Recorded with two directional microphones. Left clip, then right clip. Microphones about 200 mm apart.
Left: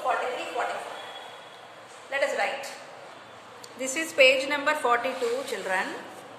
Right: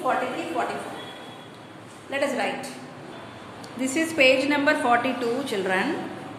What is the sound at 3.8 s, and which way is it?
A woman's voice, 20° left (ahead or behind).